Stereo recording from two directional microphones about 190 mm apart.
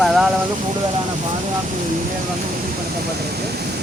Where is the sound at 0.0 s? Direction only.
Centre (ahead or behind).